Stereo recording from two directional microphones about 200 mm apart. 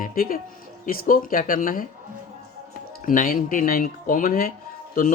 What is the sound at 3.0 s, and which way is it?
Speech, 45° left (ahead or behind).